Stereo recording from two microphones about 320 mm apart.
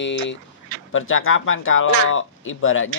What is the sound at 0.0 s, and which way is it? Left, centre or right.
Speech, left.